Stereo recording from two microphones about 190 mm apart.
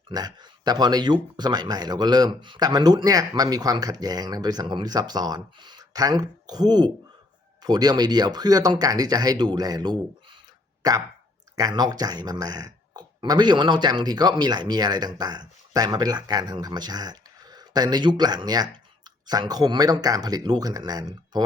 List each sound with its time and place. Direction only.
0.1 s speech: 20° right (ahead or behind)